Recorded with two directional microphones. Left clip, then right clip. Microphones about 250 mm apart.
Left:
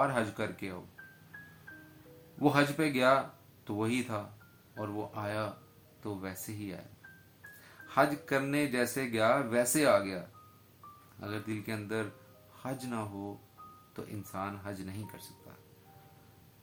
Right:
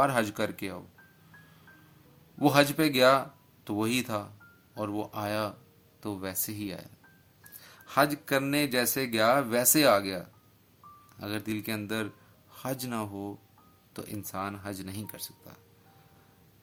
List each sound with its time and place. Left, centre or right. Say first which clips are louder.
0.0 s speech: right 5 dB; right
2.4 s speech: right 5 dB; right
11.2 s speech: right 4 dB; right